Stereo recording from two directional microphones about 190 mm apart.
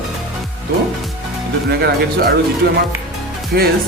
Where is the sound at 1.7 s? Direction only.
55° right (ahead or behind).